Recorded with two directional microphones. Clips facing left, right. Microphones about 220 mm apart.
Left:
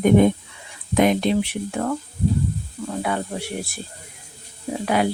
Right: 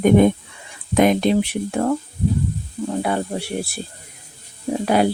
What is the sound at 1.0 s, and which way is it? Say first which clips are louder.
Speech: right 2 dB; 45° right (ahead or behind).